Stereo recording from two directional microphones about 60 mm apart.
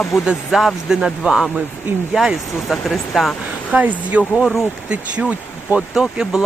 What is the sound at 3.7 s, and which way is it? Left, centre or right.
Speech, right.